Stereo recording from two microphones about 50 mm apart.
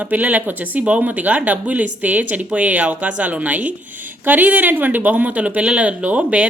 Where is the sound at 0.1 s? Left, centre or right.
Right.